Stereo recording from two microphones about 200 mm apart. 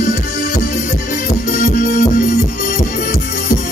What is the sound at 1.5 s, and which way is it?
Music, 40° left (ahead or behind).